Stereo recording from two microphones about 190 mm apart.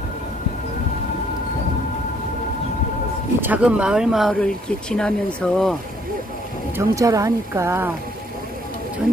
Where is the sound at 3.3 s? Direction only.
10° right (ahead or behind).